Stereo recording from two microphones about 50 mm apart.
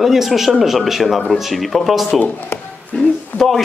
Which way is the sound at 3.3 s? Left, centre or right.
Left.